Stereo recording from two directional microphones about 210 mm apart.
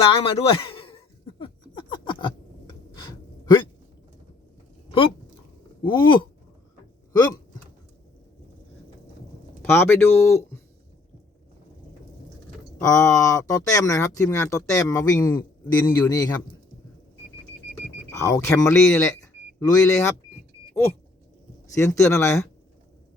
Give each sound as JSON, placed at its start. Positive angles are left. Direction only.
{"t": 0.0, "sound": "speech", "side_deg": 25}
{"t": 1.4, "sound": "a sound", "side_deg": 20}
{"t": 5.8, "sound": "speech", "side_deg": 20}
{"t": 9.6, "sound": "speech", "side_deg": 10}
{"t": 12.8, "sound": "speech", "side_deg": 15}
{"t": 18.1, "sound": "speech", "side_deg": 15}
{"t": 21.8, "sound": "speech", "side_deg": 15}